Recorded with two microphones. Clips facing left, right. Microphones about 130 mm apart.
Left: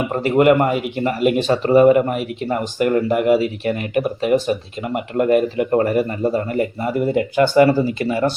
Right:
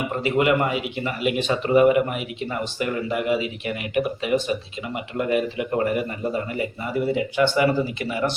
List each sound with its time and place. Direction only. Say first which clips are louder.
0.1 s speech: left 7 dB; 45° left (ahead or behind)